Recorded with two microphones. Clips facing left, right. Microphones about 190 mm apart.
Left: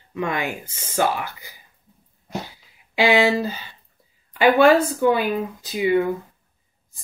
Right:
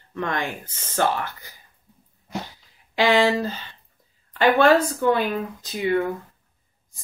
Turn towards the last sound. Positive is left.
turn(degrees=10)  # may be behind; listen again after turning